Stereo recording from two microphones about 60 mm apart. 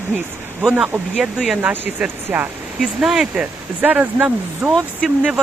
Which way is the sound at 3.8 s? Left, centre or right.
Right.